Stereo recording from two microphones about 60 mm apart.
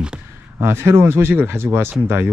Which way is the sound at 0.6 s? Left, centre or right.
Right.